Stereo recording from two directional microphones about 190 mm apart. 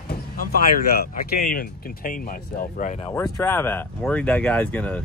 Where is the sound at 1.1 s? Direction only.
50° left (ahead or behind).